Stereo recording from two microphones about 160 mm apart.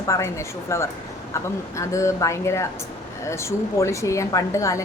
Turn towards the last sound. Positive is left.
turn(degrees=20)  # may be behind; listen again after turning